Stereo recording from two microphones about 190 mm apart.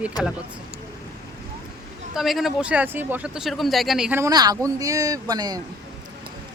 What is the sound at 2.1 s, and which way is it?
Speech, centre (ahead or behind).